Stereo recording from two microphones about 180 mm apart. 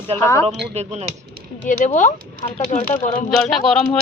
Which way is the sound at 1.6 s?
45° left (ahead or behind).